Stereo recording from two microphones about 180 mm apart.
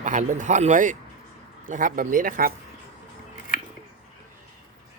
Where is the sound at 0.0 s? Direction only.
45° right (ahead or behind).